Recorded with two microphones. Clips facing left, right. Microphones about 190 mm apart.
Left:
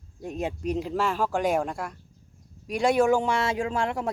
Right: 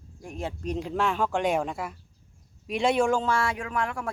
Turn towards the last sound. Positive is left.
turn(degrees=25)  # may be behind; listen again after turning